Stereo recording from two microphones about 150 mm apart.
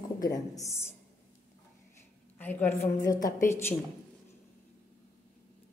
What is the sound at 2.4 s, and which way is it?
A woman's voice, 10° left (ahead or behind).